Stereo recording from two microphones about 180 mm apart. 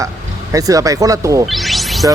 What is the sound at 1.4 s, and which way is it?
Music, centre (ahead or behind).